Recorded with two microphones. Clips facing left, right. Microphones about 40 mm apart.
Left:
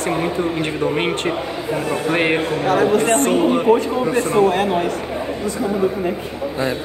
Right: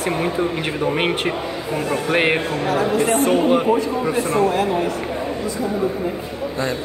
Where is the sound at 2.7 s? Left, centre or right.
Left.